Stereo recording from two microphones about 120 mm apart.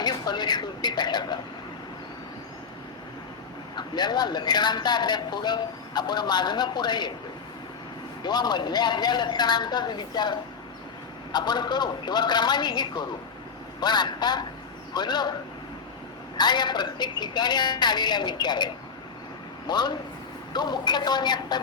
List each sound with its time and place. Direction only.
0.0 s a man's voice: 35° left (ahead or behind)
3.8 s a man's voice: 35° left (ahead or behind)
8.2 s a man's voice: 35° left (ahead or behind)
16.4 s a man's voice: 35° left (ahead or behind)